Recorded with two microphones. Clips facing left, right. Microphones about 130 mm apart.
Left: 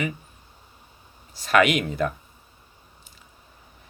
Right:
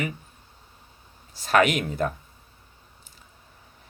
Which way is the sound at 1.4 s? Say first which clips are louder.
Left 1 dB; 45° right (ahead or behind).